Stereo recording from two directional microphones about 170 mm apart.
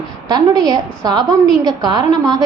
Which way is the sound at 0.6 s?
25° right (ahead or behind).